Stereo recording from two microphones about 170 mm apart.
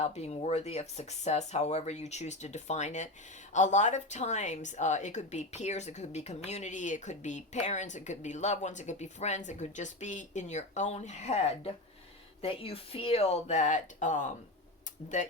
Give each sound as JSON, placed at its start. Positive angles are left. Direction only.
{"t": 0.0, "sound": "a woman's voice", "side_deg": 40}